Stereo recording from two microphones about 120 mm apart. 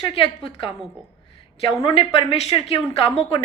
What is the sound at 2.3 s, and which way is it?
A woman's voice, 55° left (ahead or behind).